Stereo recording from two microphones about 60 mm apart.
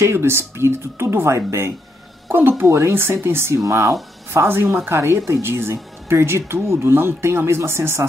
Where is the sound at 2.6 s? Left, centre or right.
Right.